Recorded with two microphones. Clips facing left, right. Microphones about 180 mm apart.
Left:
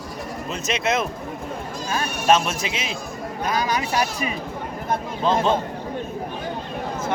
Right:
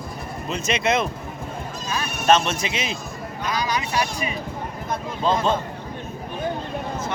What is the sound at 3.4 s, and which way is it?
Speech, 45° left (ahead or behind).